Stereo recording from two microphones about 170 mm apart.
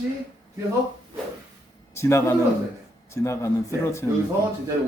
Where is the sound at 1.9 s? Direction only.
15° left (ahead or behind).